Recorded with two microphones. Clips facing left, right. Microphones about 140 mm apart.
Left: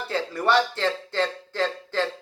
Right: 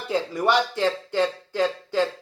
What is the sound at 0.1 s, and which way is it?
Speech, 15° right (ahead or behind).